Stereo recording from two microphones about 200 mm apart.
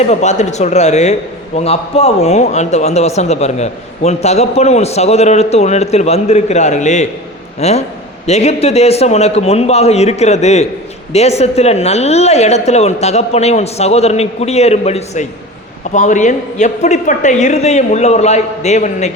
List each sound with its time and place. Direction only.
0.0 s a man's voice: 35° left (ahead or behind)